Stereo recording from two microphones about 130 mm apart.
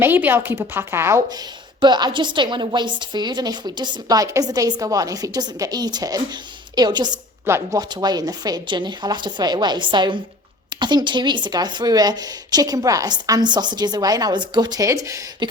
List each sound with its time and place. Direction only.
0.0 s a woman's voice: 15° right (ahead or behind)
1.8 s speech: 35° right (ahead or behind)
7.4 s a woman's voice: 20° right (ahead or behind)
7.8 s speech: 30° right (ahead or behind)